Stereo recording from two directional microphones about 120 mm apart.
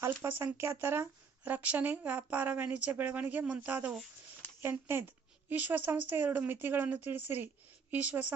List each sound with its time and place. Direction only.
0.0 s a woman's voice: 20° right (ahead or behind)